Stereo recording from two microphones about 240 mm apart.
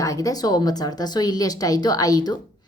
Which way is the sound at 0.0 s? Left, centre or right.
Centre.